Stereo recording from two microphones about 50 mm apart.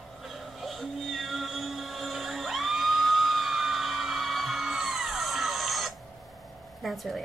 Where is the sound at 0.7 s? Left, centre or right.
Centre.